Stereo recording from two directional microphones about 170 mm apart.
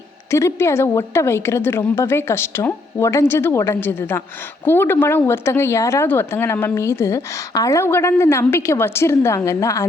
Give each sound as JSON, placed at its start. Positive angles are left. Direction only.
{"t": 0.3, "sound": "speech", "side_deg": 15}